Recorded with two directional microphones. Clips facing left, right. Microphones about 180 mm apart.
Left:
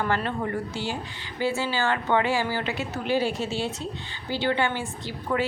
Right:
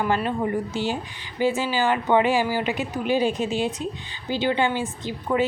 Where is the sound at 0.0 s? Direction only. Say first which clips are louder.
Right 3 dB; 15° right (ahead or behind).